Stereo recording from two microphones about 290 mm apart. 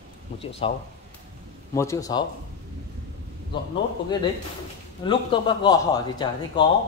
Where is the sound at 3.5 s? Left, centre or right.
Centre.